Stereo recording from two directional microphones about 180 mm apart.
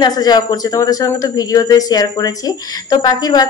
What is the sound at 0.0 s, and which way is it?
Speech, 25° left (ahead or behind).